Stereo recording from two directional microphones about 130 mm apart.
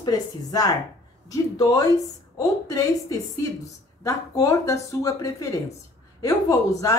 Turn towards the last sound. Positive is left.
turn(degrees=25)  # may be behind; listen again after turning